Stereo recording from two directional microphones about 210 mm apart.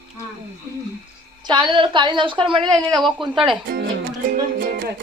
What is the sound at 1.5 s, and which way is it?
A woman's voice, 25° right (ahead or behind).